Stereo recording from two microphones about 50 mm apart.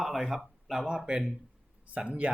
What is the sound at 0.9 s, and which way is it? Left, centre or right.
Speech, centre.